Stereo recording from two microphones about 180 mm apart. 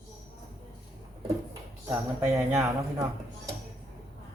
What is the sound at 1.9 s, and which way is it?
Speech, 15° right (ahead or behind).